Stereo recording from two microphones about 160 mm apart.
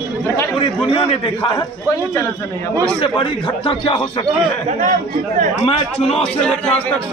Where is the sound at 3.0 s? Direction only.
30° left (ahead or behind).